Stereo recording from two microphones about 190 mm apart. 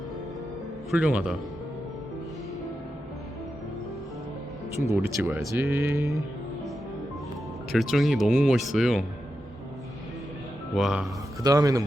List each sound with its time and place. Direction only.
0.9 s speech: 5° right (ahead or behind)
4.9 s speech: 10° right (ahead or behind)
7.7 s speech: centre (ahead or behind)
10.8 s speech: centre (ahead or behind)
11.4 s speech: 20° right (ahead or behind)